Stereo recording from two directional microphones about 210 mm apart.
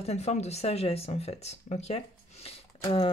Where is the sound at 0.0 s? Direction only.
30° left (ahead or behind).